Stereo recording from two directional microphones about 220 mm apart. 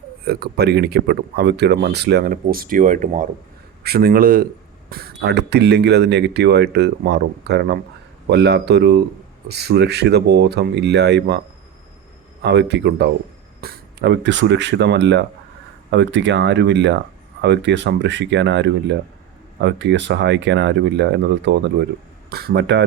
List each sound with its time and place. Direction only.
0.3 s speech: 45° right (ahead or behind)
12.4 s speech: 50° right (ahead or behind)